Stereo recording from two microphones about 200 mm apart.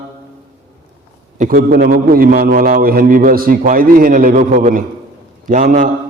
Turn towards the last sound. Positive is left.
turn(degrees=-40)  # may be behind; listen again after turning